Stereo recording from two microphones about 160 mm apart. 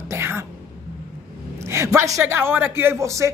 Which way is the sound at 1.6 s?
15° right (ahead or behind).